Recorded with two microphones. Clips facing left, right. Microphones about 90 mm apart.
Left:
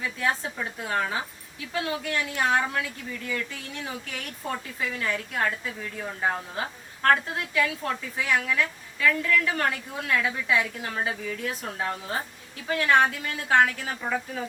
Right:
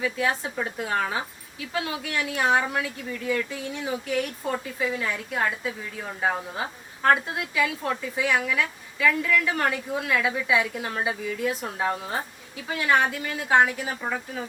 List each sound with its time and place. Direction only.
0.0 s a woman's voice: 15° right (ahead or behind)
2.3 s a woman's voice: 10° right (ahead or behind)